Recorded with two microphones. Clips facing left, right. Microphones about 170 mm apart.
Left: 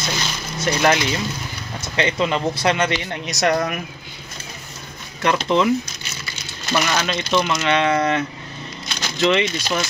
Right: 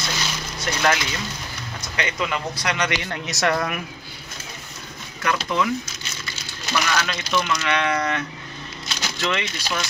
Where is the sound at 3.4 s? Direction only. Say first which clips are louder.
Left 3 dB; 40° left (ahead or behind).